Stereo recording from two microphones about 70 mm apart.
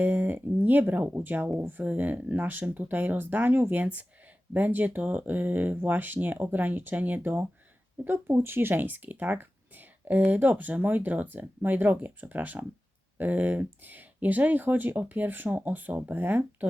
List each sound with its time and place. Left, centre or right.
0.0 s speech: right